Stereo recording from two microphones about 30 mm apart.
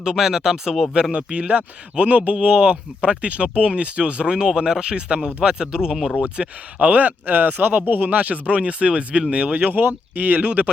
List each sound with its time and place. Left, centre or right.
0.0 s speech: right
1.1 s speech: right
5.9 s speech: centre
6.2 s speech: right
6.7 s speech: right
9.6 s speech: right